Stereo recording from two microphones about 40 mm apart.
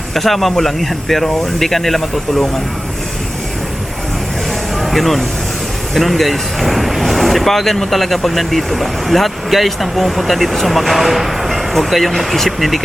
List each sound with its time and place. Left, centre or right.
0.1 s speech: centre
4.8 s vehicle: centre
5.9 s speech: centre